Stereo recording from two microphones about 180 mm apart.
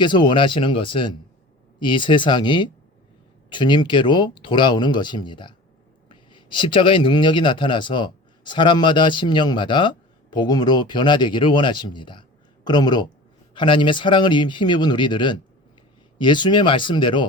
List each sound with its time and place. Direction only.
0.0 s speech: 25° left (ahead or behind)